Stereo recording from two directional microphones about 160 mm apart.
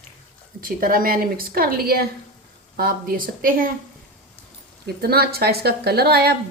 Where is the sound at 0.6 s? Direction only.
65° right (ahead or behind).